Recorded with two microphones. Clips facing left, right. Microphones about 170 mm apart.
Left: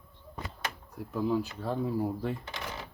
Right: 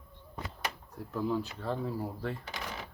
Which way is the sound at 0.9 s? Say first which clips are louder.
Left 3 dB; 10° left (ahead or behind).